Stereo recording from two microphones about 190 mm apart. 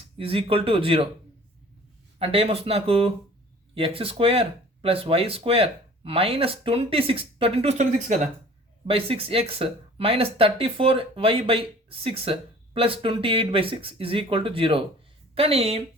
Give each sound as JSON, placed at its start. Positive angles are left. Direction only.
{"t": 0.2, "sound": "speech", "side_deg": -30}
{"t": 2.1, "sound": "speech", "side_deg": -30}